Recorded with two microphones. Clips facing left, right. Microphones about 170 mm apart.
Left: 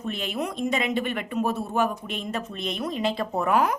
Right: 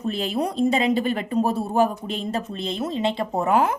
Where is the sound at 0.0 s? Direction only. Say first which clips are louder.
Right 5 dB; 35° right (ahead or behind).